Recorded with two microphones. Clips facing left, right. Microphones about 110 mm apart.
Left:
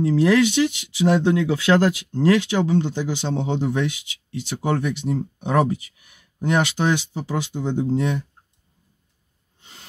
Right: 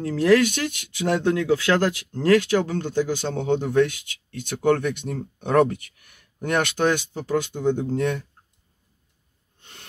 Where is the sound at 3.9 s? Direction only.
50° right (ahead or behind).